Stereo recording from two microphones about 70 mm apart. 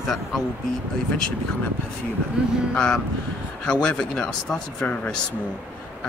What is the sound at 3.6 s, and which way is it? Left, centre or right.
Speech, centre.